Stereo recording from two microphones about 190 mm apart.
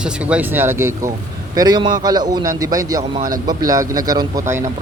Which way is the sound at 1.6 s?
20° right (ahead or behind).